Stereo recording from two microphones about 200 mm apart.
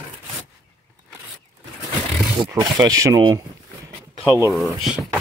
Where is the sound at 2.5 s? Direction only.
20° right (ahead or behind).